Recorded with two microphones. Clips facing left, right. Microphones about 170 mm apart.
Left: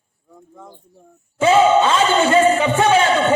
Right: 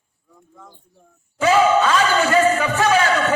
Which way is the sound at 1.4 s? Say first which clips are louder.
Left 2 dB; 25° left (ahead or behind).